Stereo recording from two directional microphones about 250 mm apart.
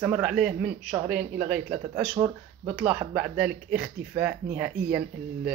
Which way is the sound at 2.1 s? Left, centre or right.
Centre.